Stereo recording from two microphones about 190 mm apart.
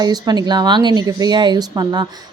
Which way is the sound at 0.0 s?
20° right (ahead or behind).